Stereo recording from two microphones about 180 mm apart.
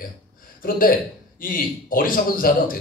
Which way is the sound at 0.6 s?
50° left (ahead or behind).